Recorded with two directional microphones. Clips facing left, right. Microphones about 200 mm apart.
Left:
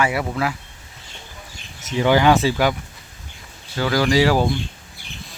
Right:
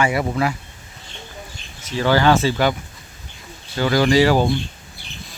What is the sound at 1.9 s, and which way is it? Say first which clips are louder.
Speech: left 1 dB; 15° left (ahead or behind).